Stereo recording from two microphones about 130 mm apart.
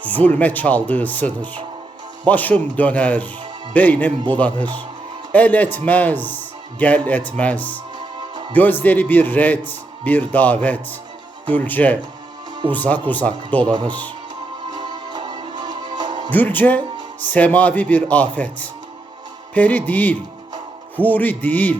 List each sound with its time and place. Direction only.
0.0 s a man's voice: 10° left (ahead or behind)
13.7 s speech: 35° right (ahead or behind)
14.7 s music: 35° right (ahead or behind)
16.3 s a man's voice: 15° left (ahead or behind)